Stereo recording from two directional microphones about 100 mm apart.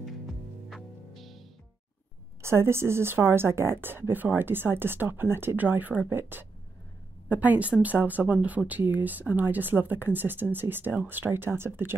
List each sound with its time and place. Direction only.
0.0 s music: centre (ahead or behind)
2.4 s speech: 25° right (ahead or behind)